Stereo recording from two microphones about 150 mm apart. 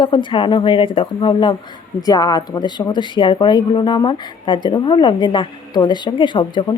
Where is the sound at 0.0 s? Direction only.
30° left (ahead or behind).